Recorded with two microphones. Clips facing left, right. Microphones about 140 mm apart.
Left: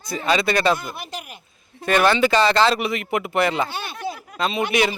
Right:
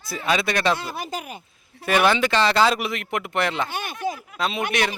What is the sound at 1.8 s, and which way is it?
Speech, 5° right (ahead or behind).